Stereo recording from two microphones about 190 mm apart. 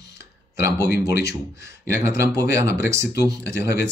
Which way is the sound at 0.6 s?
15° right (ahead or behind).